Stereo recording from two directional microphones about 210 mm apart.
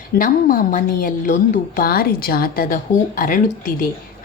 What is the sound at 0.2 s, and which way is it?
A woman's voice, 40° left (ahead or behind).